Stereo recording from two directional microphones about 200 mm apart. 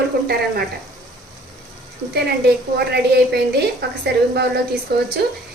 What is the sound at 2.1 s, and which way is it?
A woman's voice, 55° right (ahead or behind).